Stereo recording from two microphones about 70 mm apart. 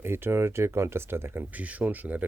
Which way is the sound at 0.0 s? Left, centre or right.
Right.